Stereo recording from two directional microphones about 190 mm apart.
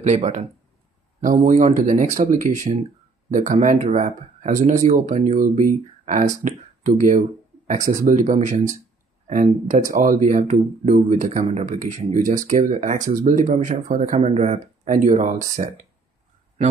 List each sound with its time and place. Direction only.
0.0 s speech: 40° right (ahead or behind)